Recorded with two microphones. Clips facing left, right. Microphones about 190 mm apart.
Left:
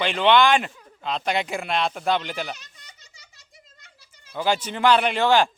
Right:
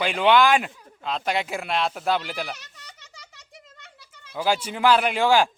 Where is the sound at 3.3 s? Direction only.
65° right (ahead or behind).